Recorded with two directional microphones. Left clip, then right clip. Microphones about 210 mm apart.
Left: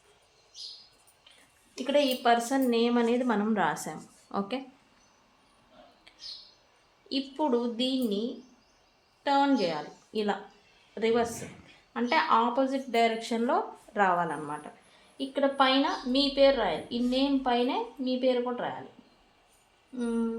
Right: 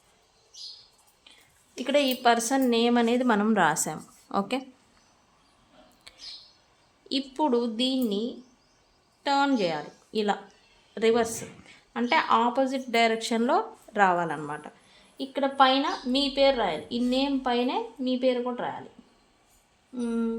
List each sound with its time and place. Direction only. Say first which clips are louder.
1.8 s a woman's voice: right 2 dB; 40° right (ahead or behind)
6.1 s a sound: right 6 dB; 40° right (ahead or behind)
7.1 s a woman's voice: right 3 dB; 40° right (ahead or behind)
9.2 s a woman's voice: right 1 dB; 35° right (ahead or behind)
20.0 s speech: right 1 dB; 30° right (ahead or behind)